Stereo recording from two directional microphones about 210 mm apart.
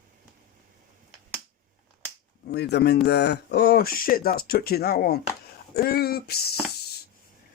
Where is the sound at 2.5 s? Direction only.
55° left (ahead or behind).